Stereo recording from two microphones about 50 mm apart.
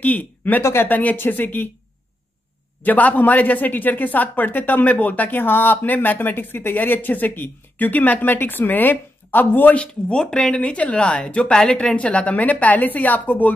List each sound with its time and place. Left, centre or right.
0.0 s speech: left
0.6 s speech: left
0.8 s speech: left
1.1 s speech: left
2.8 s speech: left
9.8 s speech: left